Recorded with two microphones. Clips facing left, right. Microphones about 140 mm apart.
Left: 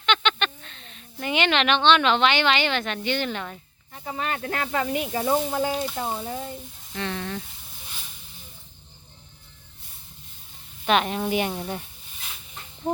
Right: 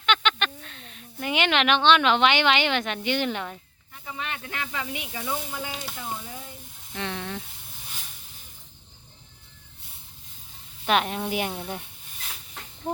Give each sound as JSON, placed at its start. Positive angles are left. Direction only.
{"t": 0.0, "sound": "speech", "side_deg": -5}
{"t": 3.9, "sound": "speech", "side_deg": 45}
{"t": 6.9, "sound": "speech", "side_deg": -5}
{"t": 10.8, "sound": "speech", "side_deg": 0}